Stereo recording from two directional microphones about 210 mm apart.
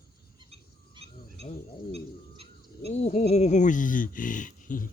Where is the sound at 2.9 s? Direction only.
30° left (ahead or behind).